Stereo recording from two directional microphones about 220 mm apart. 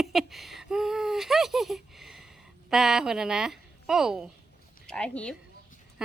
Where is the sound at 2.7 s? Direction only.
Centre (ahead or behind).